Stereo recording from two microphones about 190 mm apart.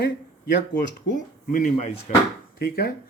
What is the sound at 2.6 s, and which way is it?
Speech, 55° left (ahead or behind).